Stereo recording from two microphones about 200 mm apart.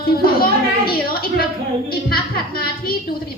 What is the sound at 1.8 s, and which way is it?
Music, 50° left (ahead or behind).